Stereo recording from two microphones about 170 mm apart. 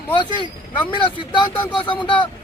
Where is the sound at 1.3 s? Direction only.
30° left (ahead or behind).